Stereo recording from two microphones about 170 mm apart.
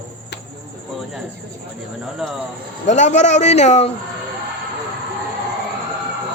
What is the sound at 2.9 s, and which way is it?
A man's voice, 45° left (ahead or behind).